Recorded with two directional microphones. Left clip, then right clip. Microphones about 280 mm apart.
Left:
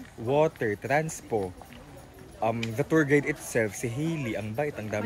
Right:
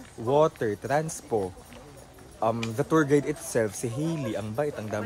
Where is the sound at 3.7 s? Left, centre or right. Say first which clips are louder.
Right 1 dB; right.